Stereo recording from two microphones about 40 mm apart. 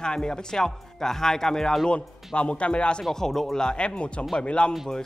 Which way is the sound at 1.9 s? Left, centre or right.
Left.